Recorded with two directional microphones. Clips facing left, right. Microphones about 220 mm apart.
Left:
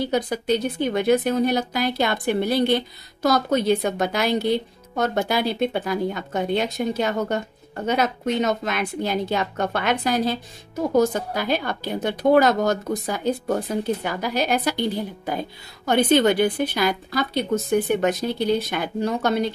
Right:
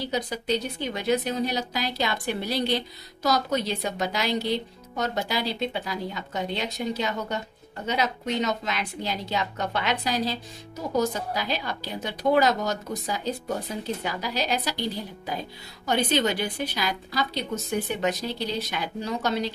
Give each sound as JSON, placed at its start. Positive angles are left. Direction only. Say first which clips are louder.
{"t": 0.0, "sound": "speech", "louder": "left 6 dB", "side_deg": 55}